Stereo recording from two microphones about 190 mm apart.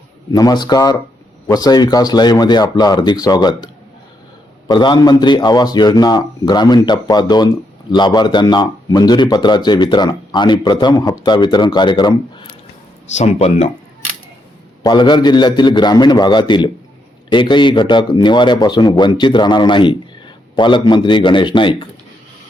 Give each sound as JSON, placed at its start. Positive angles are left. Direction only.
{"t": 0.3, "sound": "a man's voice", "side_deg": 20}
{"t": 4.7, "sound": "a man's voice", "side_deg": 25}
{"t": 13.1, "sound": "speech", "side_deg": 35}
{"t": 14.8, "sound": "a man's voice", "side_deg": 25}